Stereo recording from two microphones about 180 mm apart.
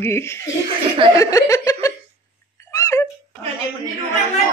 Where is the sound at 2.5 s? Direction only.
15° left (ahead or behind).